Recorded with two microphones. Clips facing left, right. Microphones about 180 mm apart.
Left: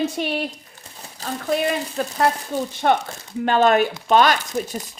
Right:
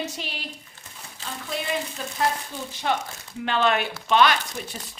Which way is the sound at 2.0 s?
50° left (ahead or behind).